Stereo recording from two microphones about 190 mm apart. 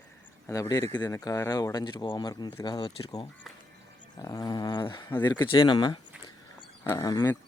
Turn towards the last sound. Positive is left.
turn(degrees=20)  # may be behind; listen again after turning